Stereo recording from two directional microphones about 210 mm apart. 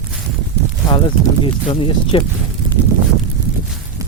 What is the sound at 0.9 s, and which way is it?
Speech, 25° left (ahead or behind).